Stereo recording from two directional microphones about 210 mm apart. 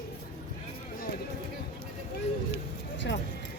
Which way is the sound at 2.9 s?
60° left (ahead or behind).